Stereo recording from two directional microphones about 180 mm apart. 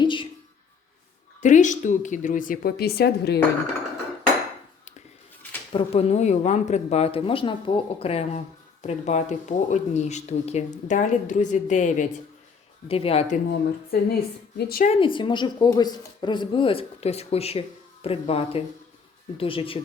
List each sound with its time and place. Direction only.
0.0 s a sound: 25° left (ahead or behind)
1.4 s speech: 45° left (ahead or behind); by 3.4 s 60° left (ahead or behind)
5.7 s speech: 35° left (ahead or behind)
12.9 s speech: 30° left (ahead or behind)
13.5 s a woman's voice: 60° left (ahead or behind)
14.8 s speech: 30° left (ahead or behind)